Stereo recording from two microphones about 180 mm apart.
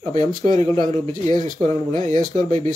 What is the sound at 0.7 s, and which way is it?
Speech, 30° right (ahead or behind).